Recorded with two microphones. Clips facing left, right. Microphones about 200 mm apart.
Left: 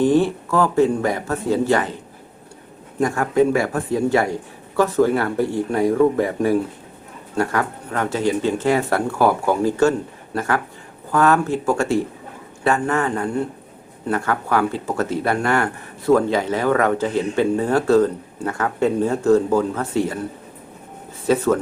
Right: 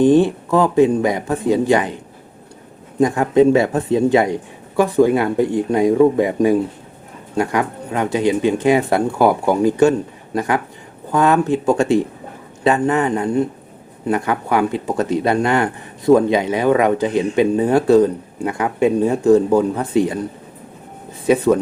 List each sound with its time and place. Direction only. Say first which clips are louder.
0.0 s speech: right 4 dB; 15° right (ahead or behind)
3.0 s speech: right 4 dB; 20° right (ahead or behind)
21.2 s speech: right 3 dB; 15° right (ahead or behind)